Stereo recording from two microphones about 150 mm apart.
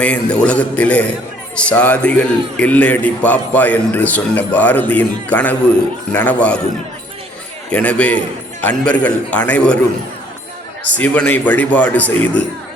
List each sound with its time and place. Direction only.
0.0 s a man's voice: 10° left (ahead or behind)
7.7 s a man's voice: 10° left (ahead or behind)
10.9 s a man's voice: 10° left (ahead or behind)